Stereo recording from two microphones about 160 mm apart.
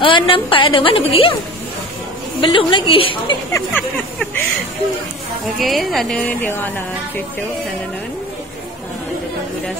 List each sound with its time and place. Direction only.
0.0 s a woman's voice: 30° left (ahead or behind)
2.4 s a woman's voice: 30° left (ahead or behind)
3.5 s a sound: 15° left (ahead or behind)
5.6 s a woman's voice: centre (ahead or behind)